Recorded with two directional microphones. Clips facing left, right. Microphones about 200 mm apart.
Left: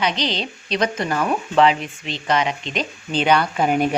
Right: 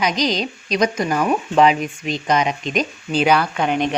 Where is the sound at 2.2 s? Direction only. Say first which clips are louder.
Right 1 dB; 20° right (ahead or behind); by 3.9 s 5° left (ahead or behind).